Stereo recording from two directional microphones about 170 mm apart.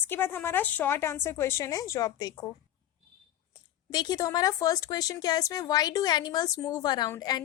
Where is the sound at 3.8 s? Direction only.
25° left (ahead or behind).